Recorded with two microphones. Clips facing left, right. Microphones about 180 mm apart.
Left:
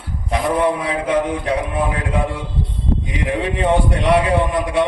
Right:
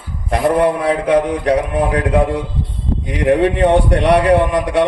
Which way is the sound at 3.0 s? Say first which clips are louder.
Right 12 dB; 60° right (ahead or behind).